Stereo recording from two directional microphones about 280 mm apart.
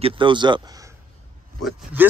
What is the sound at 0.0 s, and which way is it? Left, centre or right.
Speech, centre.